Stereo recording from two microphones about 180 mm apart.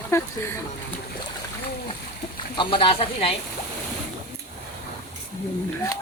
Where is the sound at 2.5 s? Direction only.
30° left (ahead or behind).